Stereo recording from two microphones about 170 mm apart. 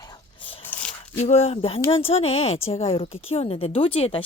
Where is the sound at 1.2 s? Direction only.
40° left (ahead or behind).